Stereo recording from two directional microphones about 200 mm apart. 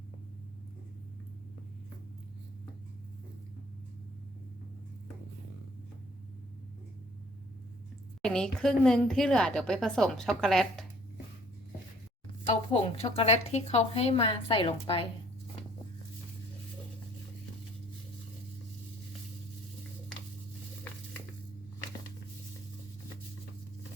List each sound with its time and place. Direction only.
8.2 s a woman's voice: 5° left (ahead or behind)
12.5 s a woman's voice: 30° left (ahead or behind)